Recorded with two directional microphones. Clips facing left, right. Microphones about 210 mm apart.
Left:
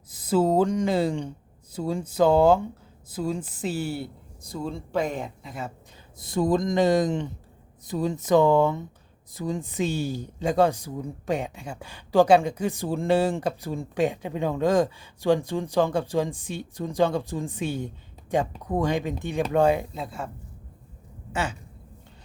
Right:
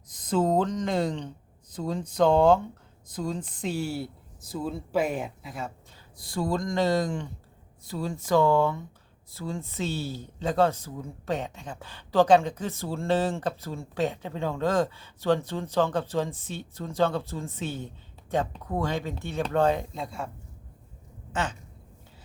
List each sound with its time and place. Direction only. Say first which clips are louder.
0.1 s speech: left 3 dB; 5° left (ahead or behind)
6.1 s speech: left 5 dB; 20° left (ahead or behind); by 20.3 s centre (ahead or behind)